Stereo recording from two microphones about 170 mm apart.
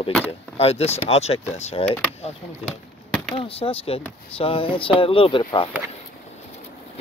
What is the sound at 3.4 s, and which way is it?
Speech, 35° left (ahead or behind).